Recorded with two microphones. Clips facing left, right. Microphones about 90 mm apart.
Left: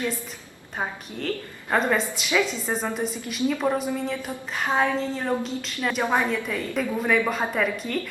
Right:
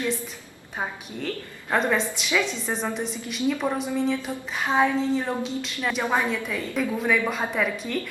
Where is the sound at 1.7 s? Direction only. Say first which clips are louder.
Even; centre (ahead or behind).